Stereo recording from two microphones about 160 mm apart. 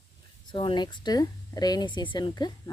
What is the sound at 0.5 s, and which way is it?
Speech, 30° left (ahead or behind).